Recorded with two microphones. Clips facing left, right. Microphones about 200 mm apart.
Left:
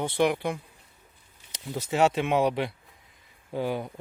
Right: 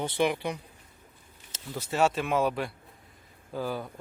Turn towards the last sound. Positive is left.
turn(degrees=20)  # may be behind; listen again after turning